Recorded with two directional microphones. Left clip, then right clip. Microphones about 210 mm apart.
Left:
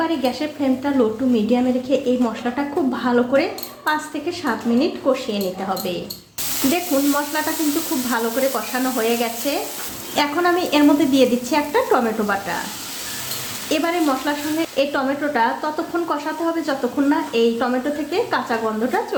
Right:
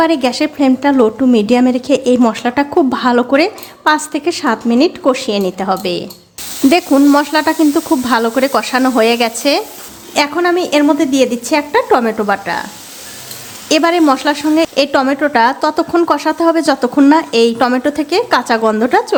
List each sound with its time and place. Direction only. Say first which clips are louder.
0.0 s a woman's voice: right 9 dB; 50° right (ahead or behind)
10.2 s a woman's voice: right 5 dB; 35° right (ahead or behind)
13.7 s a woman's voice: right 9 dB; 45° right (ahead or behind)